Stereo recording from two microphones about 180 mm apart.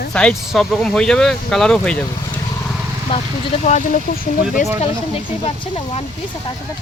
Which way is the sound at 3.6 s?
40° left (ahead or behind).